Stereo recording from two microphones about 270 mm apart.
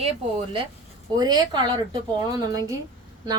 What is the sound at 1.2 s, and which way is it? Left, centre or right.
A woman's voice, centre.